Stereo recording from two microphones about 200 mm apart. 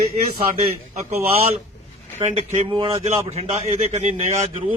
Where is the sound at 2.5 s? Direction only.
35° right (ahead or behind).